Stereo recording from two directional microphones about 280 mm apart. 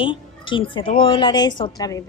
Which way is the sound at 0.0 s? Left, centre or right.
Centre.